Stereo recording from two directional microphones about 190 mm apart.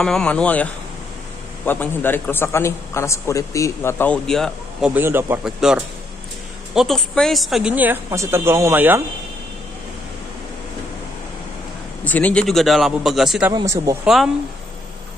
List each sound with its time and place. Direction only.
0.0 s a man's voice: 5° left (ahead or behind)
1.7 s a man's voice: 10° left (ahead or behind)
4.9 s speech: 10° right (ahead or behind)
12.0 s a man's voice: 10° left (ahead or behind)
13.5 s speech: 15° right (ahead or behind)
14.0 s a man's voice: centre (ahead or behind)